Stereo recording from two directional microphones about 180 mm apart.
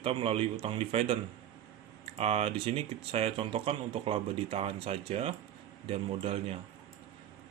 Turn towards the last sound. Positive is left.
turn(degrees=-30)  # may be behind; listen again after turning